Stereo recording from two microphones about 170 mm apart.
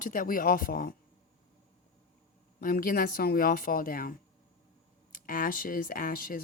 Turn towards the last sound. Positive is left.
turn(degrees=55)  # may be behind; listen again after turning